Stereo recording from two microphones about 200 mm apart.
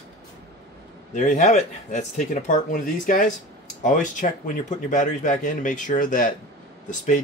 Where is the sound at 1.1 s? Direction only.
35° left (ahead or behind).